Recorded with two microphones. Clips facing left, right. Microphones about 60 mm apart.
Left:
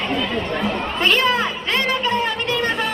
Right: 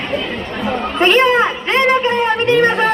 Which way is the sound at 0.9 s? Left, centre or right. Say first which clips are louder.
Right 7 dB; right.